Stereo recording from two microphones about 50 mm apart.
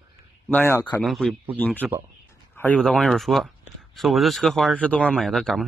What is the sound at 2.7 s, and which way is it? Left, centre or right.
Speech, centre.